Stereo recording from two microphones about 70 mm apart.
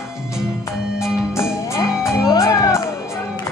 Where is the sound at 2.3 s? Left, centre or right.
Left.